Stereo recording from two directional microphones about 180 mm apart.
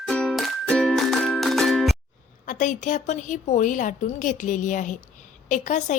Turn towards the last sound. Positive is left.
turn(degrees=40)  # may be behind; listen again after turning